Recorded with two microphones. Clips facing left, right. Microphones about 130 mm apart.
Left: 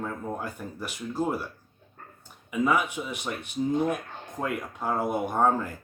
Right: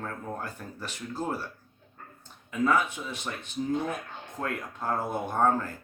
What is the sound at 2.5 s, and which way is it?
Speech, 15° left (ahead or behind).